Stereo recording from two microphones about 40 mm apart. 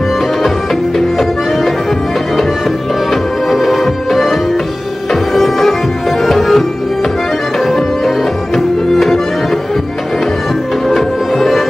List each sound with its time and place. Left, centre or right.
0.9 s music: centre
3.1 s music: centre
7.6 s music: centre
10.9 s music: centre